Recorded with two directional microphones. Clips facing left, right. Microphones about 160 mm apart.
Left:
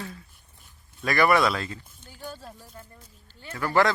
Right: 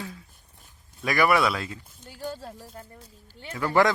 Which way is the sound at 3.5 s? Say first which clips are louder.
Right 1 dB; 15° right (ahead or behind).